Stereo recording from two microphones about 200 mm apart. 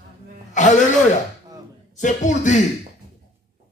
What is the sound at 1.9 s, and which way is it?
Speech, 35° left (ahead or behind).